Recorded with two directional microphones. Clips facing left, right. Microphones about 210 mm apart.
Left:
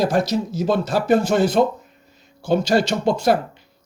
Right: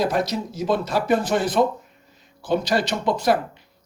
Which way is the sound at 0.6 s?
30° left (ahead or behind).